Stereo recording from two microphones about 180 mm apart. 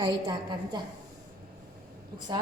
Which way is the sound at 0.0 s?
25° right (ahead or behind).